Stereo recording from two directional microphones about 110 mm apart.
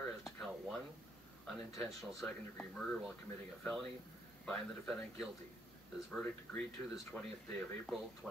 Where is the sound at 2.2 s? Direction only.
15° left (ahead or behind).